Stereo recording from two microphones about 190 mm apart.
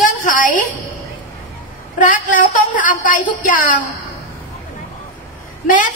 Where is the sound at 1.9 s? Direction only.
45° left (ahead or behind).